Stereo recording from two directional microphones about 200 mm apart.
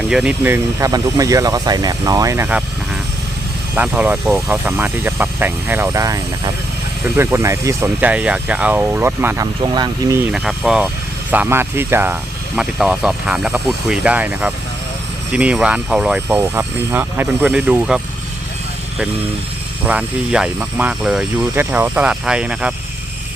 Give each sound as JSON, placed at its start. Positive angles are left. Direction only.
{"t": 0.1, "sound": "speech", "side_deg": -5}
{"t": 3.8, "sound": "speech", "side_deg": -5}
{"t": 10.3, "sound": "speech", "side_deg": -5}
{"t": 19.8, "sound": "speech", "side_deg": -5}